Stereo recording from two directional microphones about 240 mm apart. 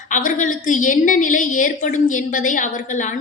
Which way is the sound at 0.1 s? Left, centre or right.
Left.